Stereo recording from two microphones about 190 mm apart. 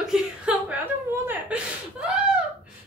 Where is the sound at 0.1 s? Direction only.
10° right (ahead or behind).